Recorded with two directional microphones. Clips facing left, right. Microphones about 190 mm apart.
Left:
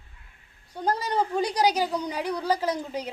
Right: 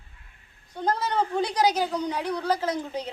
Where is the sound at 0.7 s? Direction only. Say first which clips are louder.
Even; 10° left (ahead or behind).